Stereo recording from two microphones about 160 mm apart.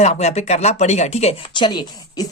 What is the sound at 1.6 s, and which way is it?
Speech, 30° left (ahead or behind).